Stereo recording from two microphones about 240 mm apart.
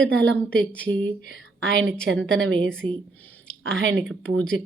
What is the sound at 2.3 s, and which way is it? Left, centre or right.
A woman's voice, right.